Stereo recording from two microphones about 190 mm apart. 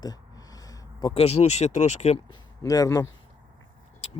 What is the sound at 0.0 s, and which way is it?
Speech, 20° left (ahead or behind).